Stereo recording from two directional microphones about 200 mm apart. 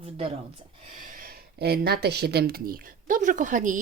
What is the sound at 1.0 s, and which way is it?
Speech, 45° right (ahead or behind).